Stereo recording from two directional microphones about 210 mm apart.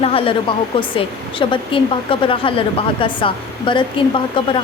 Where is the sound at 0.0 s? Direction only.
25° left (ahead or behind).